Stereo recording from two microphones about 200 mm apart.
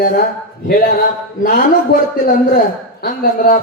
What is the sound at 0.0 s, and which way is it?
A man's voice, 45° left (ahead or behind).